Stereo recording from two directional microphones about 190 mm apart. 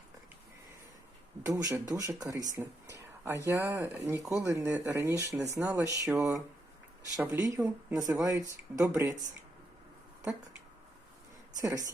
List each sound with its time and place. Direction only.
1.5 s speech: 15° right (ahead or behind)
11.6 s speech: 20° right (ahead or behind)